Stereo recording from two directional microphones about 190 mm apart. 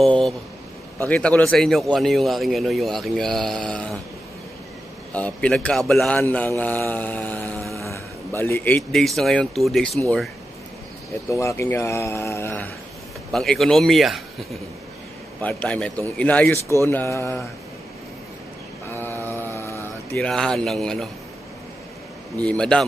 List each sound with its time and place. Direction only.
0.0 s a man's voice: 5° left (ahead or behind)
5.1 s a man's voice: 5° left (ahead or behind)
11.2 s a man's voice: 15° left (ahead or behind)
18.9 s mantra: 10° left (ahead or behind)
20.2 s a man's voice: 5° left (ahead or behind)
22.4 s a man's voice: 5° left (ahead or behind)